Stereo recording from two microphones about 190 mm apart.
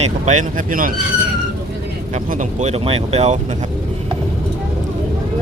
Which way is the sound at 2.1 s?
40° right (ahead or behind).